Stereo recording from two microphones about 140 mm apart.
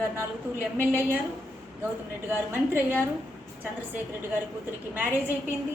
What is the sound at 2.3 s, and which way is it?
Speech, 15° right (ahead or behind).